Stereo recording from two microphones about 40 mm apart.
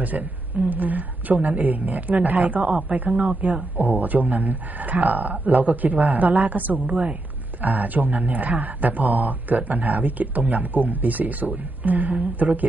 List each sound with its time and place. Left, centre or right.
0.7 s speech: right